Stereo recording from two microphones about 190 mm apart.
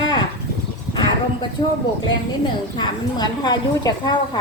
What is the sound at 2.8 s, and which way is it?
A woman's voice, 20° left (ahead or behind).